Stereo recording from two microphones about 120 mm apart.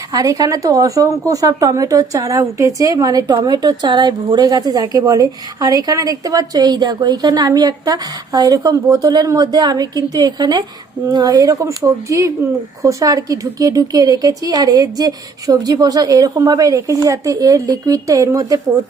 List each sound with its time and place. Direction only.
0.1 s speech: 30° right (ahead or behind)